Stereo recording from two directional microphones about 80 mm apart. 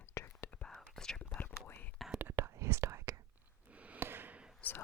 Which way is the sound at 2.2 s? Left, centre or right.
Right.